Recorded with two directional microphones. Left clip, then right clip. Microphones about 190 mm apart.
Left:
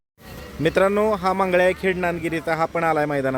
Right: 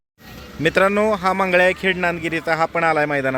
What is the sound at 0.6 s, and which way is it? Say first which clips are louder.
A man's voice: right 2 dB; centre (ahead or behind).